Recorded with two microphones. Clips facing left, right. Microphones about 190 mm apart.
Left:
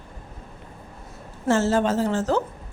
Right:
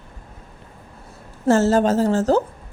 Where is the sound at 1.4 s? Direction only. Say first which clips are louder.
Right 4 dB; 40° right (ahead or behind).